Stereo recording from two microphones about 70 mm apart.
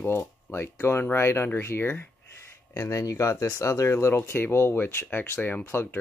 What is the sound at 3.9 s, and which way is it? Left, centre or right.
Speech, left.